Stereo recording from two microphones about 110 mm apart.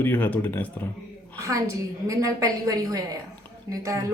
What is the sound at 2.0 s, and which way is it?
Speech, 30° right (ahead or behind).